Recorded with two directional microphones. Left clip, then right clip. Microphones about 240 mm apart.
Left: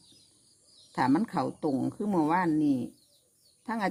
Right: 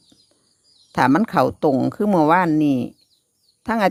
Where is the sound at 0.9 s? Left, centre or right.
Right.